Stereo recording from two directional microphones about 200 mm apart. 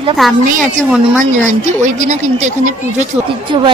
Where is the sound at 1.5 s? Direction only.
35° right (ahead or behind).